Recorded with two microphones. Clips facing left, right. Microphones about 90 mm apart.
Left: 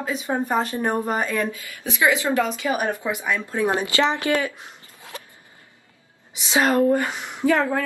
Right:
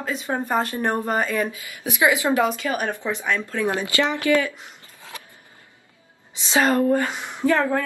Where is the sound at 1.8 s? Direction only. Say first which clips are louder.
Right 1 dB; 15° right (ahead or behind).